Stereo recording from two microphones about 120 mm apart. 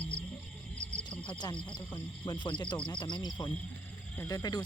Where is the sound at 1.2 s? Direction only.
40° left (ahead or behind).